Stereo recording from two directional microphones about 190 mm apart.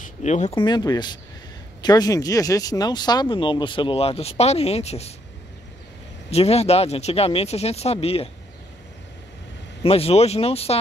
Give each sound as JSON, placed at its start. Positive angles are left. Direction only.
{"t": 0.0, "sound": "speech", "side_deg": 40}
{"t": 0.6, "sound": "speech", "side_deg": 20}
{"t": 6.3, "sound": "speech", "side_deg": 35}
{"t": 9.8, "sound": "speech", "side_deg": 30}